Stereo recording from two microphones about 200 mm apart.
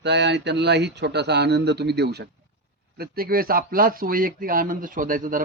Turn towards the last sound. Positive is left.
turn(degrees=-45)  # may be behind; listen again after turning